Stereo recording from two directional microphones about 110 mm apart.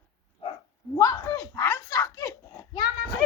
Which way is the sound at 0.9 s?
30° left (ahead or behind).